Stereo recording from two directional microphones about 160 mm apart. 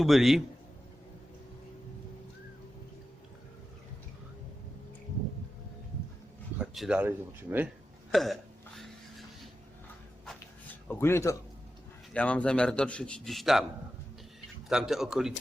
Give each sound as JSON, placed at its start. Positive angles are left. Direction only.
{"t": 0.0, "sound": "a man's voice", "side_deg": 0}
{"t": 6.6, "sound": "speech", "side_deg": -5}
{"t": 8.1, "sound": "a sound", "side_deg": 0}
{"t": 10.8, "sound": "a man's voice", "side_deg": 15}
{"t": 14.7, "sound": "a man's voice", "side_deg": 0}